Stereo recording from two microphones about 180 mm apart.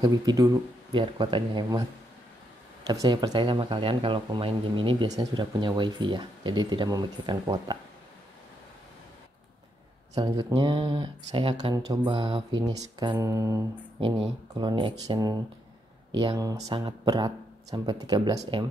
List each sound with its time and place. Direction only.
0.0 s speech: 20° right (ahead or behind)
2.9 s speech: 25° right (ahead or behind)
10.1 s speech: 20° right (ahead or behind)